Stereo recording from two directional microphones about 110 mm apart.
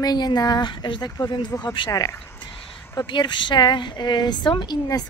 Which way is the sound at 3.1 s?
45° left (ahead or behind).